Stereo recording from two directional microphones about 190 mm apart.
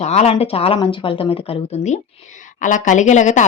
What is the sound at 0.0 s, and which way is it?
Speech, 35° left (ahead or behind).